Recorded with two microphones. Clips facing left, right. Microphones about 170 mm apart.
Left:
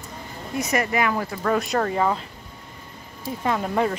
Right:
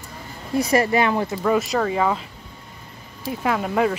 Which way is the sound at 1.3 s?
10° right (ahead or behind).